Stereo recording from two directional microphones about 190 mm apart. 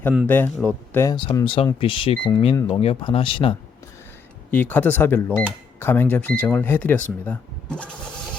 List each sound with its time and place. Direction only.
0.3 s speech: 10° left (ahead or behind)
1.1 s speech: 25° left (ahead or behind)
4.5 s speech: 10° left (ahead or behind)